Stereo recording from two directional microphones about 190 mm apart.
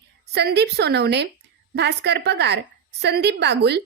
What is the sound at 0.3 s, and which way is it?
A woman's voice, 60° right (ahead or behind).